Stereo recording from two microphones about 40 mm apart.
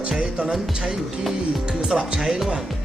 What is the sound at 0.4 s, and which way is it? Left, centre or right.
Speech, centre.